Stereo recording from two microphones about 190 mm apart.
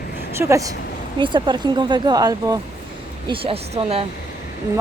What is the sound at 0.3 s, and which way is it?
Speech, 15° right (ahead or behind).